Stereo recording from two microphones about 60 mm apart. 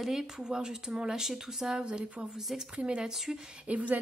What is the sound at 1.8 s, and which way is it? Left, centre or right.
Speech, centre.